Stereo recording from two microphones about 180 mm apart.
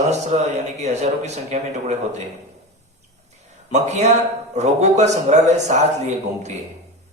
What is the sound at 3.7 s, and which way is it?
A man's voice, 40° right (ahead or behind).